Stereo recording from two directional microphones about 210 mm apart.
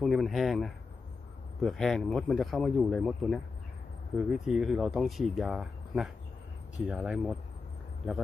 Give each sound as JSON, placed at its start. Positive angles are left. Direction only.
{"t": 0.0, "sound": "speech", "side_deg": 0}